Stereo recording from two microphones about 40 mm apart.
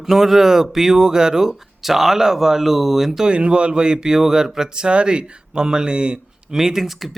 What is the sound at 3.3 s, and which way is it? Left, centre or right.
Speech, right.